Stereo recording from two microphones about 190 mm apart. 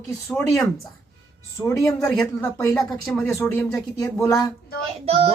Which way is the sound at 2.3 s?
10° left (ahead or behind).